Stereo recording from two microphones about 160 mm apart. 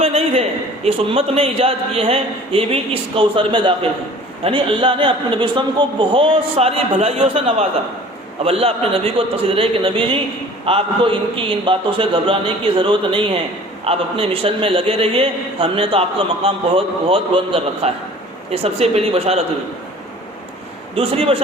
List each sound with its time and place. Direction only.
0.0 s a sound: 40° right (ahead or behind)
0.9 s a man's voice: 40° right (ahead or behind)
20.9 s a man's voice: 35° right (ahead or behind)